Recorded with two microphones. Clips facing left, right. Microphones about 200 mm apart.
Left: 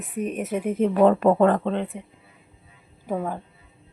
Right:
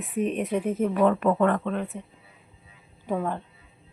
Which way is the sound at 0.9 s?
35° left (ahead or behind).